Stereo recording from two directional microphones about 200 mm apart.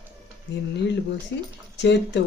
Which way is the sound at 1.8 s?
60° left (ahead or behind).